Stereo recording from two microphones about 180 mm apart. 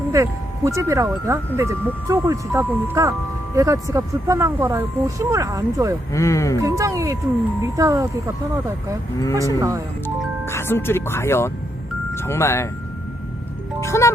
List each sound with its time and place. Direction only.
0.1 s speech: 15° right (ahead or behind)
6.1 s speech: 15° left (ahead or behind)
6.6 s speech: 15° right (ahead or behind)
9.6 s speech: 15° right (ahead or behind)
10.4 s speech: 15° left (ahead or behind)
13.8 s speech: 15° left (ahead or behind)